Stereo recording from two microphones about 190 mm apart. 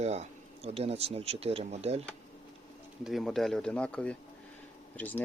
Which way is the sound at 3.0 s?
Centre (ahead or behind).